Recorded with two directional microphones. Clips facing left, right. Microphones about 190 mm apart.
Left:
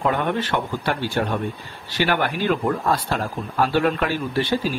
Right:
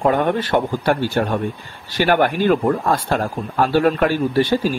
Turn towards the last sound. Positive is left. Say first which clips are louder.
# right 5 dB
turn(degrees=-45)  # may be behind; listen again after turning